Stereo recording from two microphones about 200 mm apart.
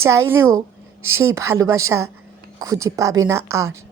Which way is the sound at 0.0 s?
15° right (ahead or behind).